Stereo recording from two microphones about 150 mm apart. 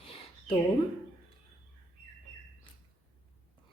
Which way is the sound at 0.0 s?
40° left (ahead or behind).